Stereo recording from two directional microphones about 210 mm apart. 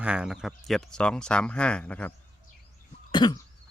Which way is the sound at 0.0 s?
5° right (ahead or behind).